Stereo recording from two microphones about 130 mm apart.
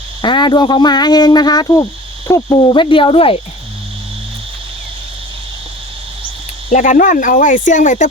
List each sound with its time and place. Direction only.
0.2 s speech: 35° left (ahead or behind)
2.2 s owl: 25° left (ahead or behind)
2.6 s speech: 35° left (ahead or behind)
6.7 s speech: 80° left